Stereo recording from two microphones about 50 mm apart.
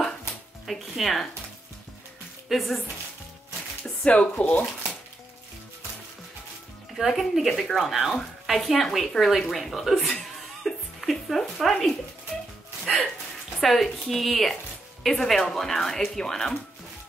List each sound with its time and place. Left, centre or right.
0.7 s a woman's voice: centre
2.5 s a woman's voice: centre
4.2 s speech: centre
7.0 s a woman's voice: centre
10.6 s a sound: centre
12.8 s music: centre
13.6 s a woman's voice: centre